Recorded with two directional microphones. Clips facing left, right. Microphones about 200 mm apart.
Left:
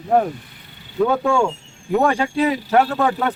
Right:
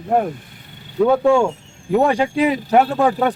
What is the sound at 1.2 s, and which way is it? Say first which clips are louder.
Speech: right 4 dB; 20° right (ahead or behind).